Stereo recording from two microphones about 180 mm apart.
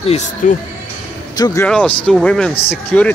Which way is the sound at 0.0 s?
35° left (ahead or behind).